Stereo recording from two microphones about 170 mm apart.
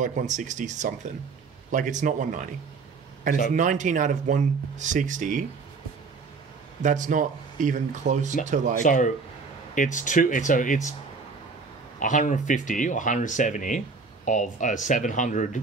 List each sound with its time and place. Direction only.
0.0 s speech: 45° right (ahead or behind)
3.5 s speech: 45° right (ahead or behind)
6.8 s speech: 45° right (ahead or behind)
8.8 s speech: 50° left (ahead or behind)
12.0 s speech: 50° left (ahead or behind)